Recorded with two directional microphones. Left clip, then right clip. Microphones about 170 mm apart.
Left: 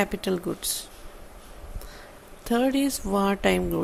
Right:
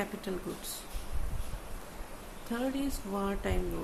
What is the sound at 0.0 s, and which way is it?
Speech, 50° left (ahead or behind).